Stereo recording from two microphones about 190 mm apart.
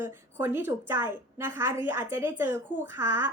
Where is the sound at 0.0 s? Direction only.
10° right (ahead or behind).